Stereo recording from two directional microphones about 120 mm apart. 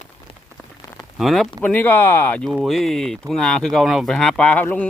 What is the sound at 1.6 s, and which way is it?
Speech, 15° left (ahead or behind).